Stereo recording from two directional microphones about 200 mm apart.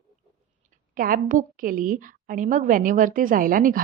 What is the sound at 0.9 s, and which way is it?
A woman's voice, 45° right (ahead or behind).